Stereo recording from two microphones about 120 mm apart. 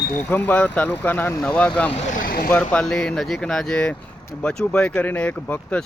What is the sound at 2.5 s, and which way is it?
Speech, 10° left (ahead or behind).